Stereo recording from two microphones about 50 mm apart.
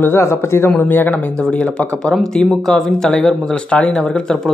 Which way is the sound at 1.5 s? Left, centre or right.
Centre.